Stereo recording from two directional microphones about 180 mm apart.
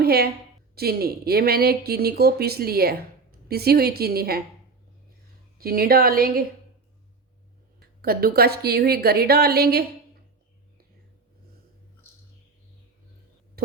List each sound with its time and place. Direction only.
0.0 s a woman's voice: 60° right (ahead or behind)
5.5 s speech: 55° right (ahead or behind)
8.0 s speech: 55° right (ahead or behind)